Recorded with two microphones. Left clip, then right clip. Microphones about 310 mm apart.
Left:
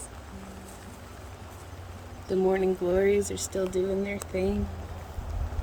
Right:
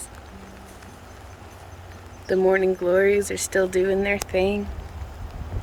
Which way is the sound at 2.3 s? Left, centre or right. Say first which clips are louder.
Right 6 dB; centre.